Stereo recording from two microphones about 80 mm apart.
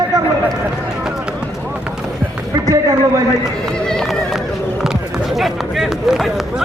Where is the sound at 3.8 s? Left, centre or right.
Centre.